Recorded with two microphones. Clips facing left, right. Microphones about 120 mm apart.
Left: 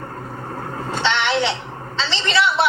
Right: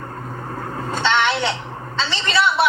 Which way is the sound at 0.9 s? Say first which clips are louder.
Right 2 dB; 45° right (ahead or behind).